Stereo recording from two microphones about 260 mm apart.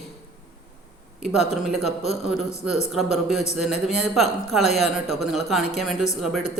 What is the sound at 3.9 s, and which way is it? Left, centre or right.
A man's voice, centre.